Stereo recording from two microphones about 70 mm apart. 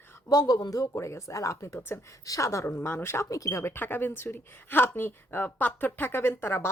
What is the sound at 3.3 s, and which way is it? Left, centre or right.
Speech, left.